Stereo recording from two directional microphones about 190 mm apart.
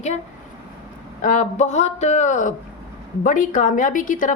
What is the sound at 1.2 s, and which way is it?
A woman's voice, 40° left (ahead or behind).